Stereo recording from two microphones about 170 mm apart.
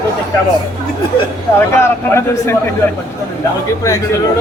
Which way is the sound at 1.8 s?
15° left (ahead or behind).